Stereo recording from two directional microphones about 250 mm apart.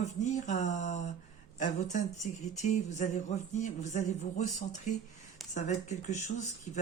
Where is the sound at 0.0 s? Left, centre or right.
Left.